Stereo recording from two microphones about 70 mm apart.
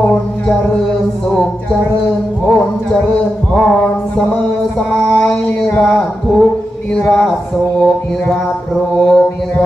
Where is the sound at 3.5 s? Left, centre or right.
Centre.